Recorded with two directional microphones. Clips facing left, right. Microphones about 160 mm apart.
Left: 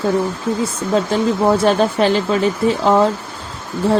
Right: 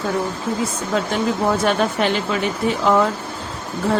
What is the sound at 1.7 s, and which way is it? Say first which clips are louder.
Speech: left 4 dB; 35° left (ahead or behind).